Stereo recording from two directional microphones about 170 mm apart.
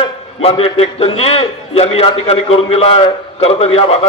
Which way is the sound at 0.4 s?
35° left (ahead or behind).